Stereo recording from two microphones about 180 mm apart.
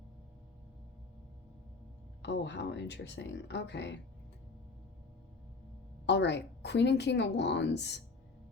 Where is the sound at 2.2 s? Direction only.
75° left (ahead or behind).